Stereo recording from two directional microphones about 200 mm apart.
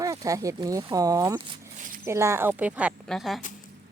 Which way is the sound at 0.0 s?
15° right (ahead or behind).